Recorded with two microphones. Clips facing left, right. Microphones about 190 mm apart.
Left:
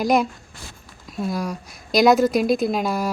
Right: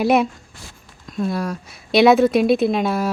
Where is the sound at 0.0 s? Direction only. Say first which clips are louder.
Right 3 dB; 5° right (ahead or behind).